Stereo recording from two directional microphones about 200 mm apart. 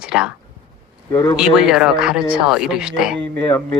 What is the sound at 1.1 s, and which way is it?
Speech, 15° left (ahead or behind).